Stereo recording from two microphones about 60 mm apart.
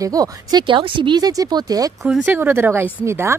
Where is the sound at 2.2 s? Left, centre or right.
Right.